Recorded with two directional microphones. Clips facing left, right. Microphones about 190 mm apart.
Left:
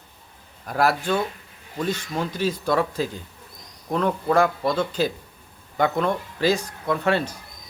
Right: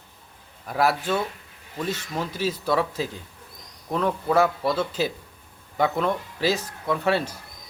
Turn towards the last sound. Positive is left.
turn(degrees=-5)  # may be behind; listen again after turning